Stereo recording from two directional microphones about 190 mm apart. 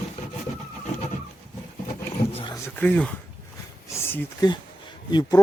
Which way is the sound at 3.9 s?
15° left (ahead or behind).